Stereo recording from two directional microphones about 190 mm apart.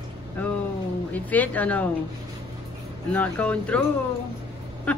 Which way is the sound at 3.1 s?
10° left (ahead or behind).